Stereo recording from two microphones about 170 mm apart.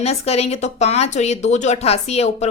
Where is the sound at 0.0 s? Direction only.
40° left (ahead or behind).